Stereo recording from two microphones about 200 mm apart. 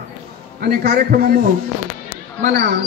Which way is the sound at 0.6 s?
50° right (ahead or behind).